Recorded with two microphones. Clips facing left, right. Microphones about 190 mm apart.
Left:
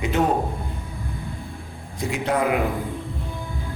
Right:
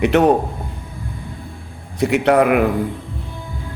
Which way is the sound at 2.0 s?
70° right (ahead or behind).